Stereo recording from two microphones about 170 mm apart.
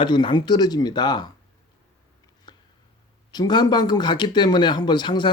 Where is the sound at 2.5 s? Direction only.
25° left (ahead or behind).